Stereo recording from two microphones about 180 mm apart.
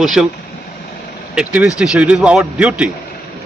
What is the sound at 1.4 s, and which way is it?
A man's voice, 5° right (ahead or behind).